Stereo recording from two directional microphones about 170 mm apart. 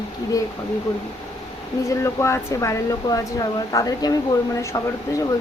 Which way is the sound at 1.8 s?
15° left (ahead or behind).